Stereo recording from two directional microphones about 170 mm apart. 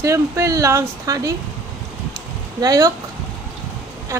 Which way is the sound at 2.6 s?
20° right (ahead or behind).